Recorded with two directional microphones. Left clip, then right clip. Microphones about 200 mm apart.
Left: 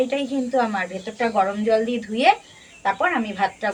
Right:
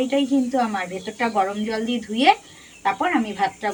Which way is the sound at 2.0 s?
20° left (ahead or behind).